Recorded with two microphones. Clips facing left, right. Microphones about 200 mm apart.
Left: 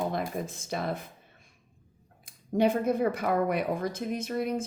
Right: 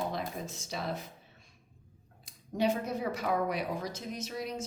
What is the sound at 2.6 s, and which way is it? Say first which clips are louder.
Speech: left 6 dB; 55° left (ahead or behind).